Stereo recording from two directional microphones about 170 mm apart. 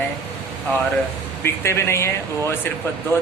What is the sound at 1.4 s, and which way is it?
Speech, 15° left (ahead or behind).